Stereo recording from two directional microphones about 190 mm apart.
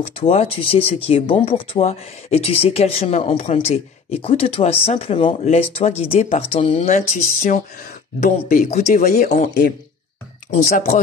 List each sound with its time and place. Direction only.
0.0 s speech: 30° left (ahead or behind)
6.9 s speech: 45° left (ahead or behind)